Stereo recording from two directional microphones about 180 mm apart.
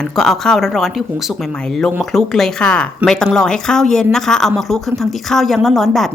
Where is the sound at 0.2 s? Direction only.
Centre (ahead or behind).